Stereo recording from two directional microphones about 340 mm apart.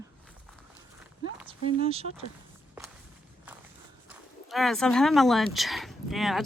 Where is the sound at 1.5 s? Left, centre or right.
Centre.